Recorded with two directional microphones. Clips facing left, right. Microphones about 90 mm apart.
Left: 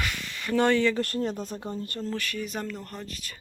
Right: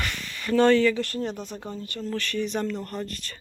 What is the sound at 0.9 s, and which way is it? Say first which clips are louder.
Speech: left 1 dB; 45° left (ahead or behind).